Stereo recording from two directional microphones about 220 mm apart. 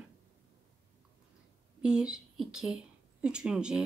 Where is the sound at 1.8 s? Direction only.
5° right (ahead or behind).